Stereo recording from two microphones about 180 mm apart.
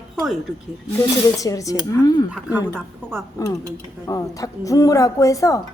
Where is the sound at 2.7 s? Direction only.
10° right (ahead or behind).